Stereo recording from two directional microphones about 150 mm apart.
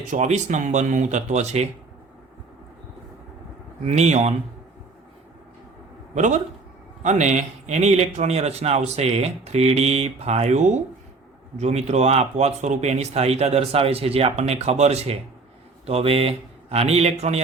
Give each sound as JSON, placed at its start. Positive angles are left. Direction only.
{"t": 0.1, "sound": "speech", "side_deg": -50}
{"t": 3.8, "sound": "speech", "side_deg": -50}
{"t": 6.1, "sound": "speech", "side_deg": -50}